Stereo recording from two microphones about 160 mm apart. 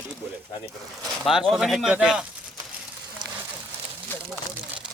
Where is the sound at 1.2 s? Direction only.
Centre (ahead or behind).